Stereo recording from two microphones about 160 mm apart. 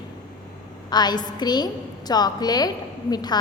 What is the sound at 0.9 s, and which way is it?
A woman's voice, 25° left (ahead or behind).